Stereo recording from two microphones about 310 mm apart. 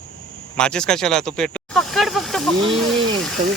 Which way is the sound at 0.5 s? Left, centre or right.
Centre.